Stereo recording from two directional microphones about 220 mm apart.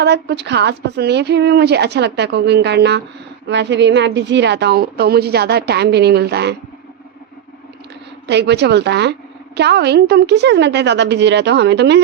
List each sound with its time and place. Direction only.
0.0 s a woman's voice: 50° right (ahead or behind)
8.3 s a woman's voice: 50° right (ahead or behind)